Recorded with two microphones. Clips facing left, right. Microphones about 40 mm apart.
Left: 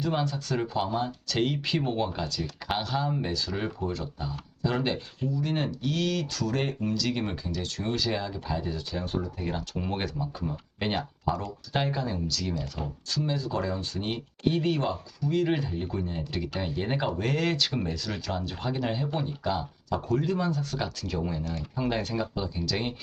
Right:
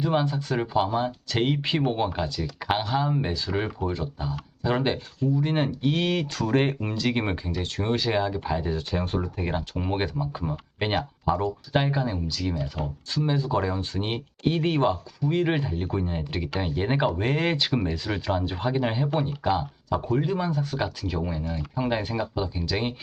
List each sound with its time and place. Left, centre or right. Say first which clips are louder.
0.0 s speech: right 4 dB; right
2.4 s speech: right 5 dB; centre; by 8.8 s right
8.9 s speech: right 4 dB; right
9.4 s speech: right 3 dB; right